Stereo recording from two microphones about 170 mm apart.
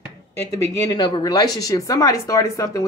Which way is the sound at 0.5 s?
20° left (ahead or behind).